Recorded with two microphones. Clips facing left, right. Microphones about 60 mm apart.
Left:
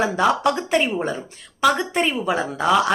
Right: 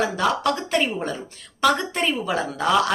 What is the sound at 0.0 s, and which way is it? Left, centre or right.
Speech, left.